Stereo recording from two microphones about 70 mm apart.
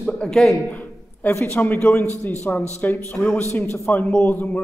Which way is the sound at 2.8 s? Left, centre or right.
Left.